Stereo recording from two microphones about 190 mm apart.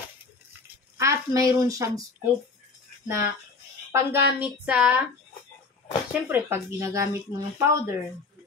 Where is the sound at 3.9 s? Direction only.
10° right (ahead or behind).